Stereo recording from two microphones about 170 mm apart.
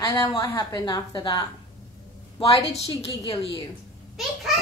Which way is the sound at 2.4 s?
35° left (ahead or behind).